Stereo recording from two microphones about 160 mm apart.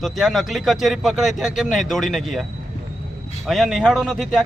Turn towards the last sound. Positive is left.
turn(degrees=0)  # may be behind; listen again after turning